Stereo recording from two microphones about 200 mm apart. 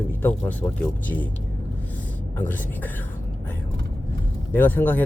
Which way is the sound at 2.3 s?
10° left (ahead or behind).